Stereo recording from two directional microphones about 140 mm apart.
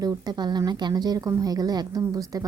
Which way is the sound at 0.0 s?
30° right (ahead or behind).